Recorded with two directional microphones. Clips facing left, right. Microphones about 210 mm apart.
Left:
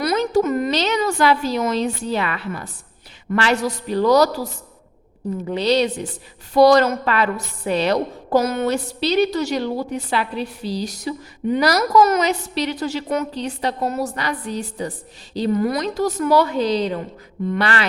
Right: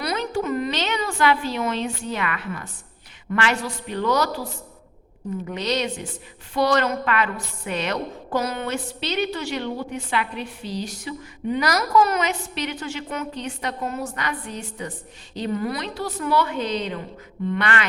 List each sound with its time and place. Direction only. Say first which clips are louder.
0.0 s a sound: left 7 dB; 40° left (ahead or behind)
3.3 s a woman's voice: left 5 dB; 40° left (ahead or behind)
5.5 s a woman's voice: left 8 dB; 35° left (ahead or behind)